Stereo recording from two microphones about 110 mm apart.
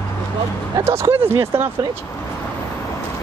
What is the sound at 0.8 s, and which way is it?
Speech, 25° right (ahead or behind).